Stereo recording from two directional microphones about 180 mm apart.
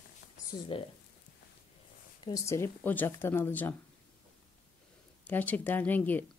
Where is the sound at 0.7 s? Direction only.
30° left (ahead or behind).